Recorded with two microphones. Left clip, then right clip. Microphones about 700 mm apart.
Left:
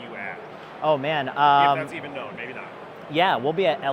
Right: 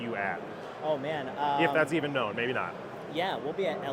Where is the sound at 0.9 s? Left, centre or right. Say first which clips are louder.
Left 9 dB; left.